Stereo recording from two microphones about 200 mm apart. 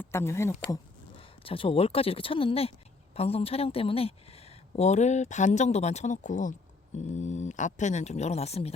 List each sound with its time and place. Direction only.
0.0 s speech: 10° left (ahead or behind)
1.1 s speech: 25° left (ahead or behind)